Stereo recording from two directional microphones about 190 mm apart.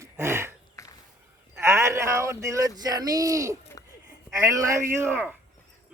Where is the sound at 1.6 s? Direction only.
15° right (ahead or behind).